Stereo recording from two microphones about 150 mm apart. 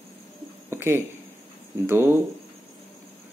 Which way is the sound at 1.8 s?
15° right (ahead or behind).